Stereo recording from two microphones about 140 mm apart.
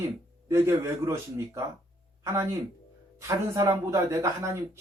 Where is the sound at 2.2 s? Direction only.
20° right (ahead or behind).